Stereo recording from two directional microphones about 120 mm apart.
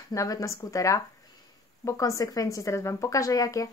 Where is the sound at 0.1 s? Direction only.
25° left (ahead or behind).